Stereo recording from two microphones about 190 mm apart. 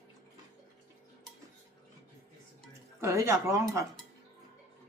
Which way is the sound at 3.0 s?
15° right (ahead or behind).